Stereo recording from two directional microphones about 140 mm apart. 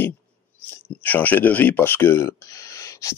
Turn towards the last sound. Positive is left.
turn(degrees=20)  # may be behind; listen again after turning